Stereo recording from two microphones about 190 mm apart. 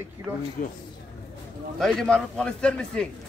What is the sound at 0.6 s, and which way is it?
Speech, 45° left (ahead or behind).